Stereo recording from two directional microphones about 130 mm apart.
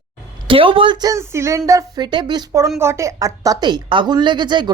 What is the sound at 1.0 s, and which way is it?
Speech, 25° right (ahead or behind).